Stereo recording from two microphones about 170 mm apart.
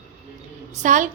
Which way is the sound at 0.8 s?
45° right (ahead or behind).